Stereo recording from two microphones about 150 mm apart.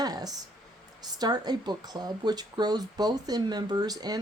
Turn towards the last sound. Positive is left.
turn(degrees=-25)  # may be behind; listen again after turning